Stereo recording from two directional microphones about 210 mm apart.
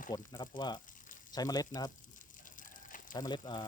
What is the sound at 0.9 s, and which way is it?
Frying, 40° left (ahead or behind).